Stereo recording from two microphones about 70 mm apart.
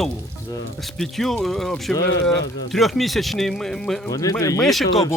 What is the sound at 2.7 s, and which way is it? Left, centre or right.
A man's voice, centre.